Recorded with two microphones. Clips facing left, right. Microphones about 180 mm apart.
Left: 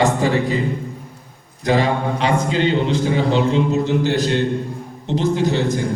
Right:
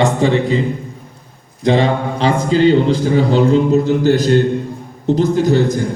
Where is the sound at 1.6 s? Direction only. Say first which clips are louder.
Right 3 dB; 25° right (ahead or behind); by 5.6 s 40° right (ahead or behind).